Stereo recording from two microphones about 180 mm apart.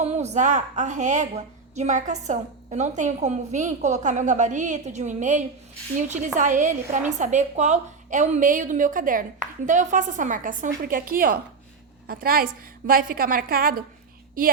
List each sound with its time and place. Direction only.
0.0 s a woman's voice: 35° right (ahead or behind); by 13.8 s 55° right (ahead or behind)